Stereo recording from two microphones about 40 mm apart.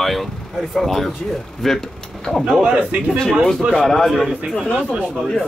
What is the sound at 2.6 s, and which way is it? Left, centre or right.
Speech, right.